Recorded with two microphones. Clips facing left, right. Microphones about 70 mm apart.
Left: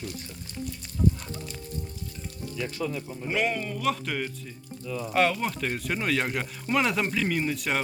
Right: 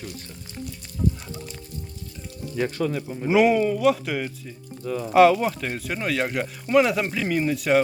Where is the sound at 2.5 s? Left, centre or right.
Right.